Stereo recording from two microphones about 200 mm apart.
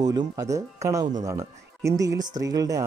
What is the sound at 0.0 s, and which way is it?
Speech, 20° right (ahead or behind).